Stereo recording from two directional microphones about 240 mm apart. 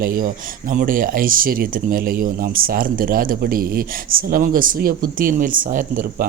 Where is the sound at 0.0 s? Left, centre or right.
Right.